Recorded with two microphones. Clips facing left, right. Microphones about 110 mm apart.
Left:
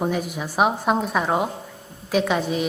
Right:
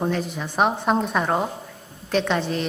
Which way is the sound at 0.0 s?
10° left (ahead or behind).